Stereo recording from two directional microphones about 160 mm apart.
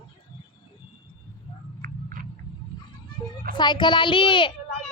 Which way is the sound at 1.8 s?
60° right (ahead or behind).